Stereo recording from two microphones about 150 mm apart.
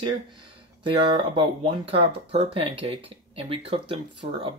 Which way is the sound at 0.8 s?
35° right (ahead or behind).